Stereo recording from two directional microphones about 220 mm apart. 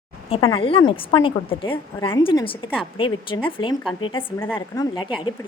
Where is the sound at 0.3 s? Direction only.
25° left (ahead or behind).